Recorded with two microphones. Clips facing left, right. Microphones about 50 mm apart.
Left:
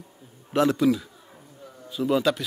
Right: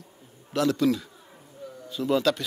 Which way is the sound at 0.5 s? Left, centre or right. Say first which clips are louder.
Left 3 dB; left.